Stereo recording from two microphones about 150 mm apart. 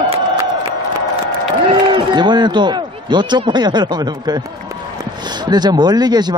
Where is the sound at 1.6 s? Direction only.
30° right (ahead or behind).